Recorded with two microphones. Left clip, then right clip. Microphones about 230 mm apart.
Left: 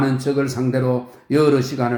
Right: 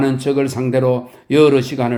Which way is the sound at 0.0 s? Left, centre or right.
Right.